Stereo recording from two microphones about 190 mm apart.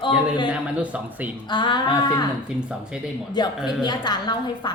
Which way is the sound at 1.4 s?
25° left (ahead or behind).